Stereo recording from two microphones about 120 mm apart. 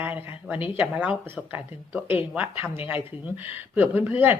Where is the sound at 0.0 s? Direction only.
15° right (ahead or behind).